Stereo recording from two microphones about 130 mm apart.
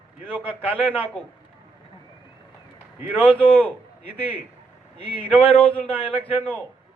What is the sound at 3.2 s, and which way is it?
A man's voice, 40° left (ahead or behind).